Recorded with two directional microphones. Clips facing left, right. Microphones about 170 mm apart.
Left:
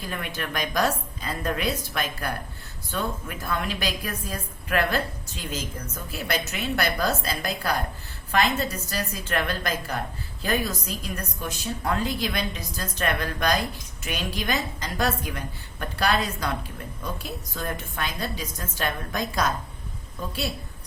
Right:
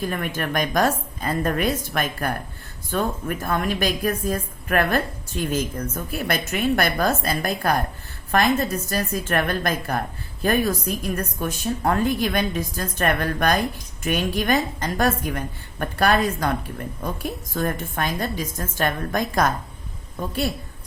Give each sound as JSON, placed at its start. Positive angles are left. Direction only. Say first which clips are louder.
{"t": 0.1, "sound": "a woman's voice", "louder": "right 6 dB", "side_deg": -50}